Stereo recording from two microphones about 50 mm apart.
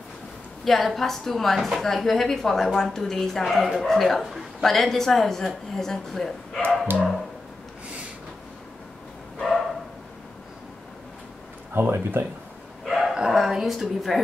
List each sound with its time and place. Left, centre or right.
0.7 s a woman's voice: centre
9.4 s dog: centre
11.7 s speech: right
12.8 s dog: centre